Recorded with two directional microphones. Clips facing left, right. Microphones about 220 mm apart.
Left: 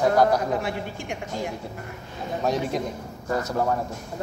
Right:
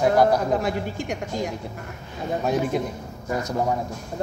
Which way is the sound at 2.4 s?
10° right (ahead or behind).